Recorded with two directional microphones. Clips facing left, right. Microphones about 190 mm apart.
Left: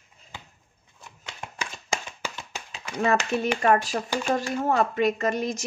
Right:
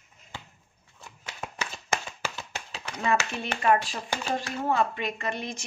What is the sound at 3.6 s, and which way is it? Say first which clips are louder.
Speech: right 2 dB; 45° left (ahead or behind).